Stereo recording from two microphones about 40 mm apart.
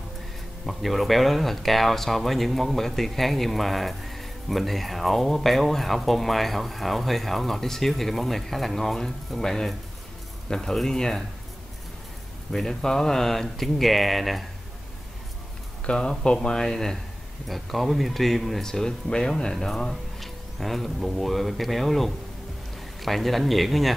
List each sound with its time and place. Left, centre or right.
0.7 s speech: centre
12.5 s speech: centre
15.8 s speech: left
17.5 s speech: centre